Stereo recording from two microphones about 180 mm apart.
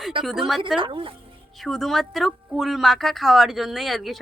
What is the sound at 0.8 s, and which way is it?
Speech, 30° right (ahead or behind).